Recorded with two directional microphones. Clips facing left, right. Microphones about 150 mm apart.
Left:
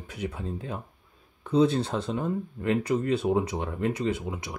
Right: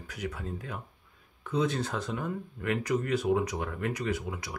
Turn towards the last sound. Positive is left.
turn(degrees=25)  # may be behind; listen again after turning